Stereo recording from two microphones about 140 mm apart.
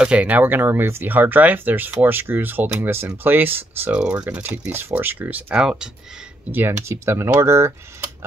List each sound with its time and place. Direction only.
0.0 s speech: 10° right (ahead or behind)